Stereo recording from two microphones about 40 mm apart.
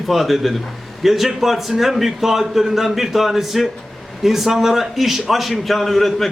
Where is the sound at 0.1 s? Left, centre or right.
Centre.